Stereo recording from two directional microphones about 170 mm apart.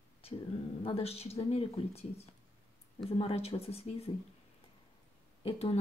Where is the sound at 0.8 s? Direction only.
35° left (ahead or behind).